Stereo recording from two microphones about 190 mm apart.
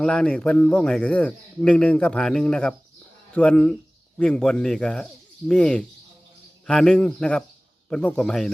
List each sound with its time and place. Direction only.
0.0 s speech: 5° left (ahead or behind)